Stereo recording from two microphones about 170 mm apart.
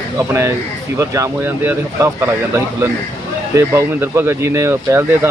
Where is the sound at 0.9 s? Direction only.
15° right (ahead or behind).